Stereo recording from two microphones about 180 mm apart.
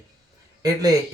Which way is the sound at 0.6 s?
20° right (ahead or behind).